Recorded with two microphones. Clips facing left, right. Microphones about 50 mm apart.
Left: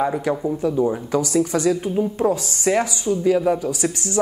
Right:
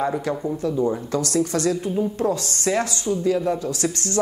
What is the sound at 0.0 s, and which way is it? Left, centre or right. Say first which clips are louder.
A woman's voice: left 3 dB; centre.